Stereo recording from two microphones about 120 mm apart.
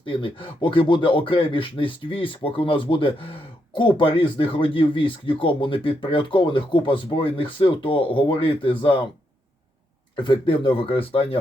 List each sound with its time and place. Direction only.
0.0 s speech: 45° left (ahead or behind)
10.2 s speech: 45° left (ahead or behind)